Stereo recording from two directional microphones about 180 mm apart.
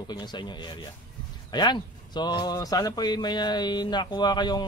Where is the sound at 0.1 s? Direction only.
25° left (ahead or behind).